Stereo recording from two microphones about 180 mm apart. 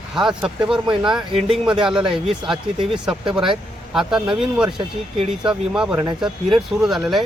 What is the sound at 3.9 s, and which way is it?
Speech, 5° right (ahead or behind).